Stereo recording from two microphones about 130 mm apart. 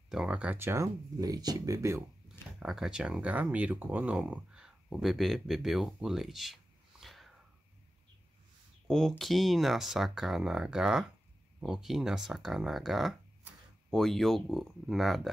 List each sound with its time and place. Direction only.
0.1 s speech: 5° right (ahead or behind); by 2.0 s 25° right (ahead or behind)
2.6 s speech: 5° right (ahead or behind)
8.8 s speech: 5° left (ahead or behind)